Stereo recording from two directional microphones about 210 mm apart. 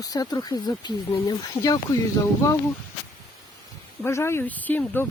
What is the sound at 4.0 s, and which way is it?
Speech, 10° left (ahead or behind).